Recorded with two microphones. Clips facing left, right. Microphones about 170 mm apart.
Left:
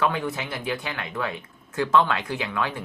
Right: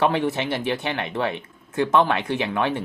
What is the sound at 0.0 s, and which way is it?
Speech, 25° right (ahead or behind).